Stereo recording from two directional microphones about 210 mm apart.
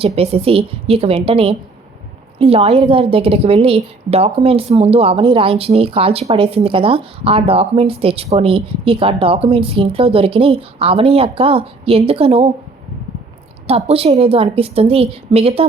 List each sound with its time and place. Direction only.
0.2 s speech: 30° right (ahead or behind)
13.7 s speech: 30° right (ahead or behind)